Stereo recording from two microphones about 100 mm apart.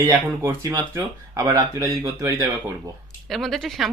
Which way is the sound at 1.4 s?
35° right (ahead or behind).